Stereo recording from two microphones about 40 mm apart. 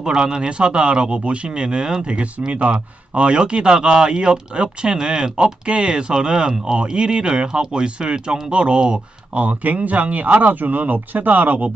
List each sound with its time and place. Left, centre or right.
0.0 s speech: centre
9.3 s speech: right